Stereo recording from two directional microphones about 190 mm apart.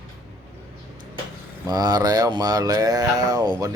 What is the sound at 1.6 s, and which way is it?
Speech, 20° right (ahead or behind).